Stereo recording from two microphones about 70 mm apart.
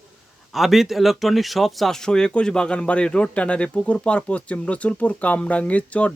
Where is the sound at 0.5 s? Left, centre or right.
Centre.